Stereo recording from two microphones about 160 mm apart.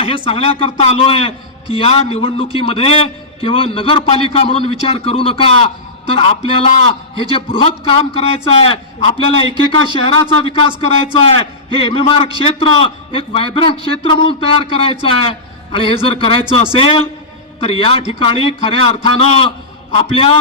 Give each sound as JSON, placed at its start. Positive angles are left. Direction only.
{"t": 0.0, "sound": "a man's voice", "side_deg": 35}